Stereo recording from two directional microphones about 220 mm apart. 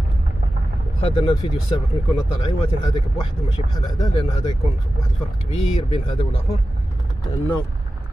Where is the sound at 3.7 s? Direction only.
20° left (ahead or behind).